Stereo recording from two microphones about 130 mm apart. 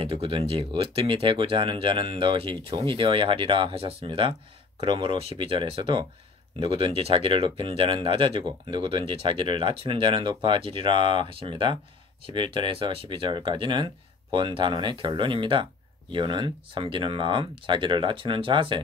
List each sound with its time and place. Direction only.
0.0 s speech: 45° right (ahead or behind)